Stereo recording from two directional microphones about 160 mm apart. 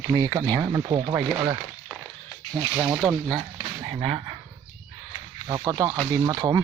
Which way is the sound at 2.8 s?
10° right (ahead or behind).